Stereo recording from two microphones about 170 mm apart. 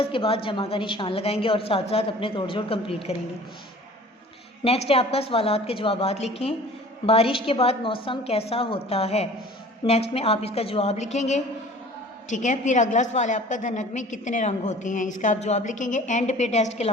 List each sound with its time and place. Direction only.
0.0 s a woman's voice: 35° left (ahead or behind)
4.6 s a woman's voice: 35° left (ahead or behind)